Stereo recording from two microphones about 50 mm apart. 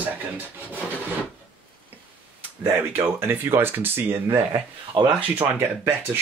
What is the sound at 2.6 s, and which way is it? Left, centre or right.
Speech, right.